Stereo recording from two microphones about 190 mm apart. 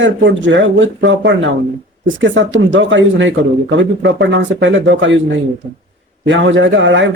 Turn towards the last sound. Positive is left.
turn(degrees=-75)  # may be behind; listen again after turning